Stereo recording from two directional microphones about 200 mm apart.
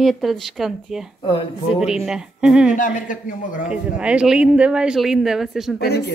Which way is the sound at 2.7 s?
40° left (ahead or behind).